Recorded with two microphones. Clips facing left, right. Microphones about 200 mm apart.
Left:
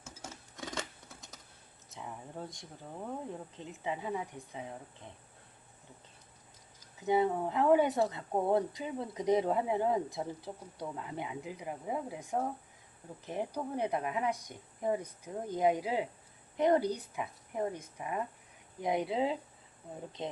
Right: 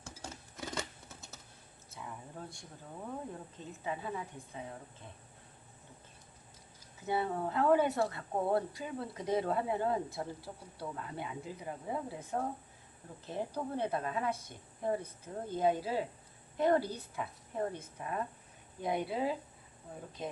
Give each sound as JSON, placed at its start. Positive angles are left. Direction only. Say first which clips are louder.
{"t": 0.0, "sound": "scissors", "louder": "right 1 dB", "side_deg": 0}
{"t": 1.9, "sound": "a sound", "louder": "left 2 dB", "side_deg": 15}
{"t": 3.6, "sound": "speech", "louder": "left 1 dB", "side_deg": 20}
{"t": 7.0, "sound": "speech", "louder": "left 5 dB", "side_deg": 15}